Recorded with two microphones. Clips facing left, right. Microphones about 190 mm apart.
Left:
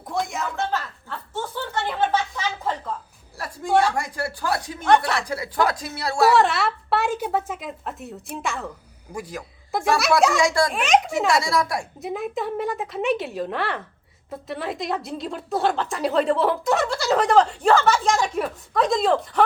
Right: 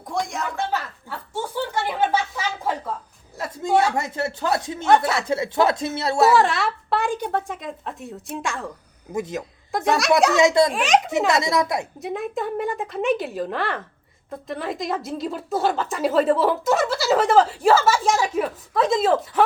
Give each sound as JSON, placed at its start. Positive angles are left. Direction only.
{"t": 0.1, "sound": "a woman's voice", "side_deg": 0}
{"t": 1.3, "sound": "a sound", "side_deg": -10}
{"t": 3.3, "sound": "a sound", "side_deg": -20}
{"t": 3.8, "sound": "speech", "side_deg": -25}
{"t": 6.3, "sound": "a woman's voice", "side_deg": 0}
{"t": 9.1, "sound": "speech", "side_deg": -20}
{"t": 9.7, "sound": "a woman's voice", "side_deg": 0}
{"t": 10.3, "sound": "speech", "side_deg": -20}
{"t": 10.7, "sound": "a woman's voice", "side_deg": 0}
{"t": 11.3, "sound": "speech", "side_deg": -20}
{"t": 11.9, "sound": "a woman's voice", "side_deg": 0}